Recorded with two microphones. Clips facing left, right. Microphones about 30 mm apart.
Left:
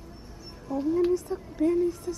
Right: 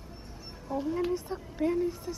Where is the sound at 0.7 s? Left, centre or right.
Right.